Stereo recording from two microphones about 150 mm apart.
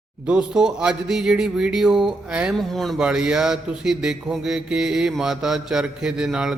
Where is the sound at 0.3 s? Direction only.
5° right (ahead or behind).